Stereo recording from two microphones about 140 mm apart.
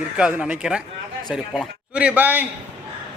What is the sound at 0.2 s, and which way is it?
A man's voice, 10° right (ahead or behind).